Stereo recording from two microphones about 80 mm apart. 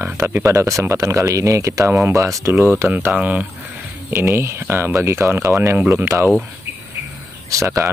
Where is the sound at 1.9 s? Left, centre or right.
Right.